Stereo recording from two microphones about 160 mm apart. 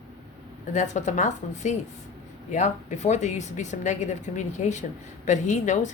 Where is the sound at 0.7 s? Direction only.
50° left (ahead or behind).